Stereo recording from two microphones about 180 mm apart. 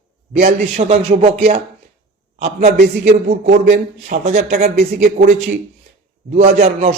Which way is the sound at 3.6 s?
40° right (ahead or behind).